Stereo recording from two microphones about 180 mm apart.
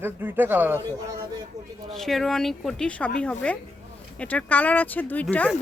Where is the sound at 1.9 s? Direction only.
Centre (ahead or behind).